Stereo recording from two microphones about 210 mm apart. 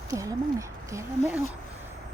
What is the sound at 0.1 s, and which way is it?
Speech, 15° right (ahead or behind).